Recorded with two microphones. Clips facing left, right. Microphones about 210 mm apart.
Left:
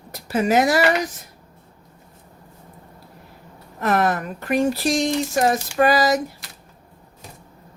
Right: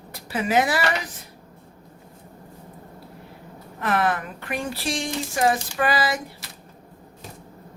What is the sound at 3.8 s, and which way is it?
Speech, 40° left (ahead or behind).